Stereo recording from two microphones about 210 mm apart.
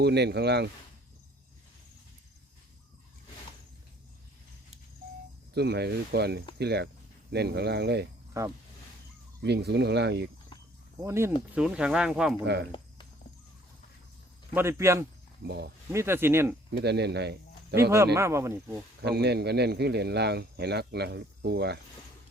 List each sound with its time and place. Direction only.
0.0 s speech: 50° right (ahead or behind)
5.5 s speech: 50° right (ahead or behind)
8.3 s speech: 15° right (ahead or behind)
9.4 s speech: 50° right (ahead or behind)
11.0 s speech: 10° right (ahead or behind)
14.5 s speech: 10° right (ahead or behind)
15.4 s speech: 50° right (ahead or behind)
15.9 s speech: 10° right (ahead or behind)
16.7 s speech: 50° right (ahead or behind)
17.9 s speech: 15° right (ahead or behind)
19.0 s speech: 50° right (ahead or behind)